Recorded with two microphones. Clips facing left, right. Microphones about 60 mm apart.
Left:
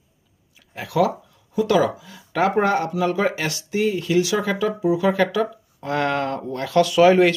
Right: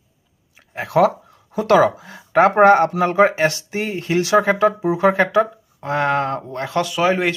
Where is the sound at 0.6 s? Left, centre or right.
Right.